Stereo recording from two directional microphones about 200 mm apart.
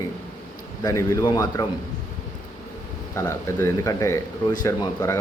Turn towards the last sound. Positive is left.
turn(degrees=15)  # may be behind; listen again after turning